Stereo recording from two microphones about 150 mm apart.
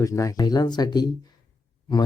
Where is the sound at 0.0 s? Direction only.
20° left (ahead or behind).